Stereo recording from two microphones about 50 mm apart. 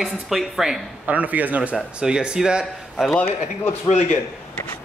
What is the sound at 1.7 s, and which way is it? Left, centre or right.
Speech, centre.